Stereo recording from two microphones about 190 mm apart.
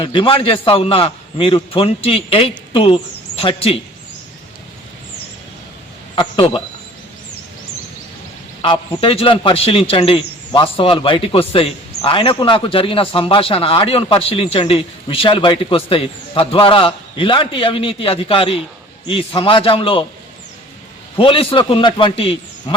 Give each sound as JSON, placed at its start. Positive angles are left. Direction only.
{"t": 0.0, "sound": "a man's voice", "side_deg": 25}
{"t": 6.1, "sound": "a man's voice", "side_deg": 25}
{"t": 9.0, "sound": "a man's voice", "side_deg": 30}
{"t": 21.2, "sound": "a man's voice", "side_deg": 30}